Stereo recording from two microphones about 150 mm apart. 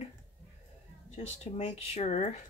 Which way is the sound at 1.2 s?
45° left (ahead or behind).